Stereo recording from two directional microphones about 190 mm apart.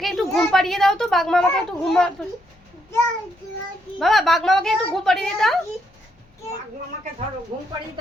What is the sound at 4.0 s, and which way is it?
A woman's voice, centre (ahead or behind).